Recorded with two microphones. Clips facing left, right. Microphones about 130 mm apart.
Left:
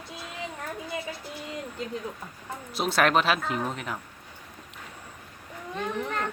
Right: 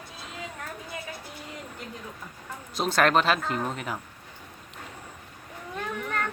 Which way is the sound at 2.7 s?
Centre (ahead or behind).